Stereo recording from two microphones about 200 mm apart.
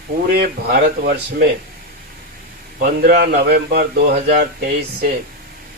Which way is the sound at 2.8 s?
50° right (ahead or behind).